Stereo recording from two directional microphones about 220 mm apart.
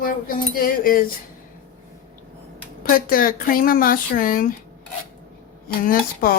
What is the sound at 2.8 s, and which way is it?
Speech, 40° left (ahead or behind).